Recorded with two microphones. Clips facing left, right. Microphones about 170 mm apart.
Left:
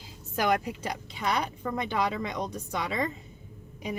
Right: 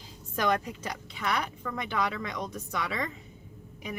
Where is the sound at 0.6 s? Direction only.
25° left (ahead or behind).